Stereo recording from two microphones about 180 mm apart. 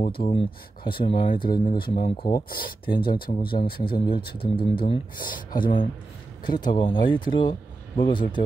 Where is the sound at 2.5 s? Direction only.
55° left (ahead or behind).